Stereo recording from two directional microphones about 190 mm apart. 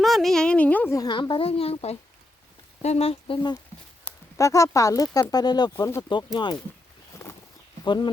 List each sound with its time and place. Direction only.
0.0 s a woman's voice: centre (ahead or behind); by 6.6 s 25° left (ahead or behind)
7.2 s a sound: 10° left (ahead or behind)
7.9 s speech: 25° left (ahead or behind)